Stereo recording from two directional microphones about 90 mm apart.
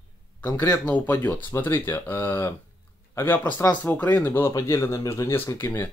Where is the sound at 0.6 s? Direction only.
20° left (ahead or behind).